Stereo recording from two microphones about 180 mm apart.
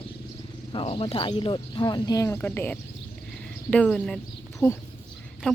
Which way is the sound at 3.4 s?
5° left (ahead or behind).